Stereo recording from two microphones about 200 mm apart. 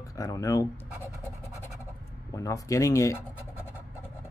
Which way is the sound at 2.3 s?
15° left (ahead or behind).